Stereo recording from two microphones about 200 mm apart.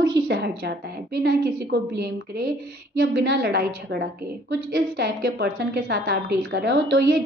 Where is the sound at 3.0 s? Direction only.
60° right (ahead or behind).